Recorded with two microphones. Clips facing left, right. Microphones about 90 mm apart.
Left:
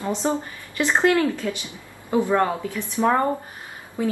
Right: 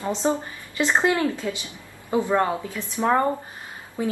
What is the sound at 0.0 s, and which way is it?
A woman's voice, 20° right (ahead or behind).